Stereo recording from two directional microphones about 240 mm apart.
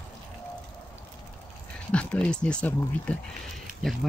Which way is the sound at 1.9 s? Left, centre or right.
Centre.